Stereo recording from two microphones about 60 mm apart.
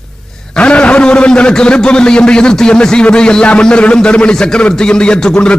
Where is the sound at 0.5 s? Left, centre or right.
Centre.